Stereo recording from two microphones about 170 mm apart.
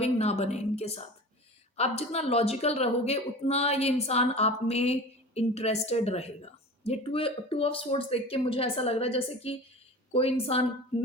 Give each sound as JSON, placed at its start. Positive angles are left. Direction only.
{"t": 0.0, "sound": "a woman's voice", "side_deg": 40}